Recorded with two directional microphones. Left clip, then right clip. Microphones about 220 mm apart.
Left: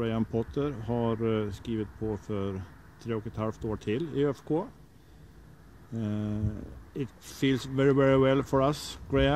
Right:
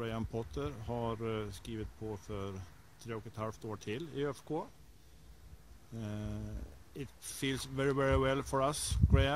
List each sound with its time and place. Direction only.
0.0 s speech: 5° right (ahead or behind)
5.9 s speech: 5° right (ahead or behind)